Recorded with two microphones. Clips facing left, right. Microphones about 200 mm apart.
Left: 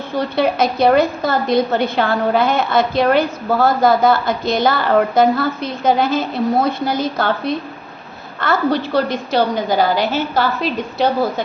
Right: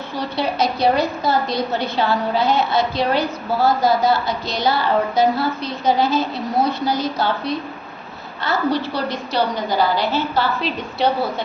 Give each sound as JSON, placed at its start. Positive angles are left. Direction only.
{"t": 0.1, "sound": "a woman's voice", "side_deg": 50}